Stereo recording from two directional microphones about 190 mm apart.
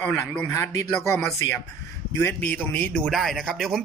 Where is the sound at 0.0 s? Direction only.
5° left (ahead or behind).